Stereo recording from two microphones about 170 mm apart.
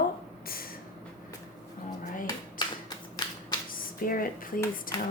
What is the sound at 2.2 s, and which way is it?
Clapping, 25° left (ahead or behind).